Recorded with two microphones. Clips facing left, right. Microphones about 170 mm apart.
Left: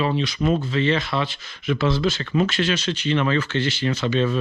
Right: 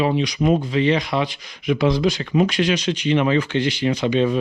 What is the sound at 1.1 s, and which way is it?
Speech, 40° right (ahead or behind).